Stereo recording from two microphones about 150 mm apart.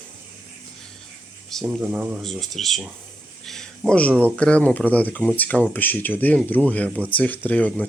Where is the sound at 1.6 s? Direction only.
10° right (ahead or behind).